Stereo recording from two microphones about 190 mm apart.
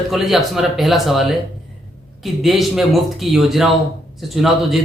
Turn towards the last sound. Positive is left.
turn(degrees=0)  # may be behind; listen again after turning